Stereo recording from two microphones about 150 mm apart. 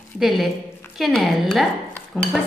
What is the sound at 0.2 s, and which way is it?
Speech, centre (ahead or behind).